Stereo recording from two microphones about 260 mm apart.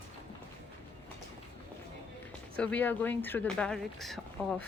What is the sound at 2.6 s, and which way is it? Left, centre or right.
Speech, centre.